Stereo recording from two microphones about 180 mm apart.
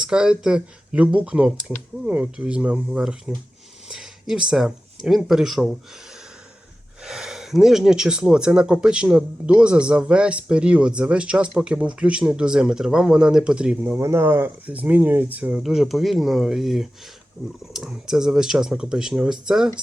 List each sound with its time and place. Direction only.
0.0 s speech: 5° right (ahead or behind)
7.0 s speech: centre (ahead or behind)